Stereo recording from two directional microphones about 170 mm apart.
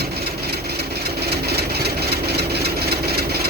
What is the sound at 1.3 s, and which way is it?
Vehicle, 70° right (ahead or behind).